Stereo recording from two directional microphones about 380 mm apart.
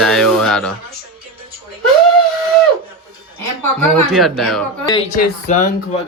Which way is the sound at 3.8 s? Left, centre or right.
Centre.